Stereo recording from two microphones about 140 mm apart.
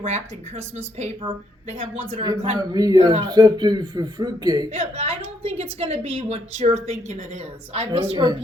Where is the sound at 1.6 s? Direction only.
50° right (ahead or behind).